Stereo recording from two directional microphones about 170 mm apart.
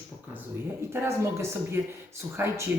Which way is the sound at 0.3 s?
15° right (ahead or behind).